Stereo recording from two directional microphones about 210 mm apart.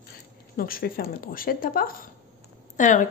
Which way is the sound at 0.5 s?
45° left (ahead or behind).